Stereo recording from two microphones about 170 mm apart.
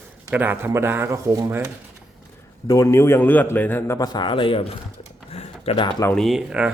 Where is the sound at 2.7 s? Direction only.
20° left (ahead or behind).